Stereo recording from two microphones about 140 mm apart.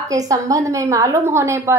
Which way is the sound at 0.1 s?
25° right (ahead or behind).